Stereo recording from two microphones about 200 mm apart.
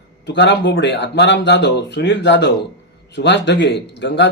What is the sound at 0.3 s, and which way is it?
Speech, 60° left (ahead or behind).